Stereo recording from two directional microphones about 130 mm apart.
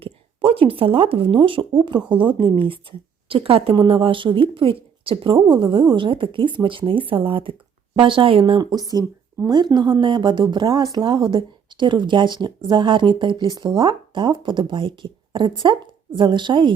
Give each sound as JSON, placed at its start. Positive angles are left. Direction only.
{"t": 0.0, "sound": "speech", "side_deg": -45}
{"t": 8.7, "sound": "speech", "side_deg": -30}